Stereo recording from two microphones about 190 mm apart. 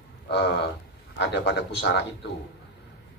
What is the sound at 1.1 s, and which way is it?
Speech, 65° left (ahead or behind).